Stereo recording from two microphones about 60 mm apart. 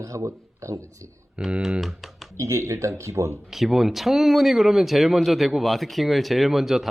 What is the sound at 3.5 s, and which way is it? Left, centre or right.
Speech, centre.